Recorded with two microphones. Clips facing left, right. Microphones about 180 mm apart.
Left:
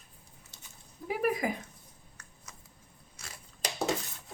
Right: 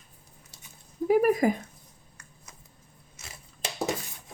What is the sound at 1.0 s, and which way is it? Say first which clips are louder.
Speech: right 9 dB; 45° right (ahead or behind).